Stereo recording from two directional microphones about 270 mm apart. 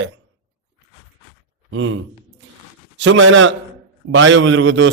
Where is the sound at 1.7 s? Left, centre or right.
Right.